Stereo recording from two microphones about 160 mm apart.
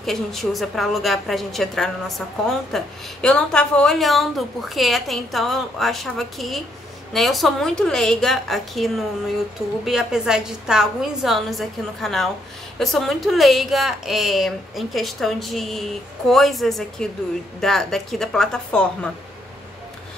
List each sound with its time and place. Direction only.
0.0 s a woman's voice: centre (ahead or behind)